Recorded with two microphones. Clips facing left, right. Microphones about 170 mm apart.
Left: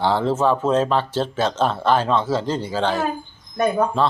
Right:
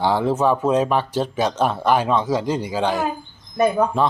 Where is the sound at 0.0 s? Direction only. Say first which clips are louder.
Even; 15° right (ahead or behind).